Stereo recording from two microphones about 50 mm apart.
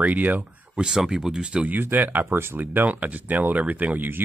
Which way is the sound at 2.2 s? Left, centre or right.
Right.